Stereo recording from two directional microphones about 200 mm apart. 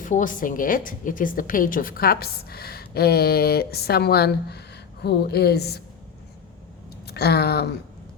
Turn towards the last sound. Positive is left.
turn(degrees=55)  # may be behind; listen again after turning